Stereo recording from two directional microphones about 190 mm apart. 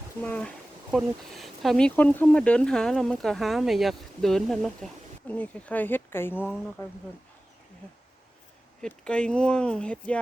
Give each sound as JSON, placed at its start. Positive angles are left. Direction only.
{"t": 0.2, "sound": "speech", "side_deg": 10}
{"t": 8.8, "sound": "speech", "side_deg": 5}